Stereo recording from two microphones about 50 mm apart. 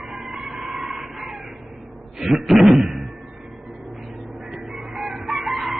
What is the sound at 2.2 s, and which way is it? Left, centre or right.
Speech, centre.